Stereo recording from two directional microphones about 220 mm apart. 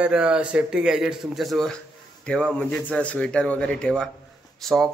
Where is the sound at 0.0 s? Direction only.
5° right (ahead or behind).